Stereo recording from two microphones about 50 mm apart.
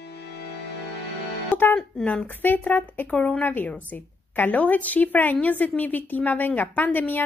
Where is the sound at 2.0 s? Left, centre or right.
Left.